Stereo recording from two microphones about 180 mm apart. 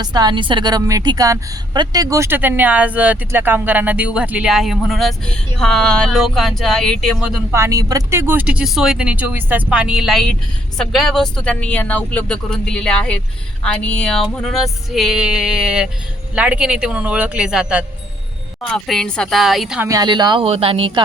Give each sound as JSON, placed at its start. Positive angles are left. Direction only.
{"t": 0.0, "sound": "a woman's voice", "side_deg": -25}
{"t": 7.5, "sound": "a woman's voice", "side_deg": -15}
{"t": 19.9, "sound": "speech", "side_deg": -25}